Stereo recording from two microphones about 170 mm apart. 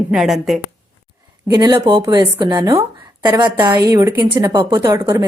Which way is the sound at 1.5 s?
25° right (ahead or behind).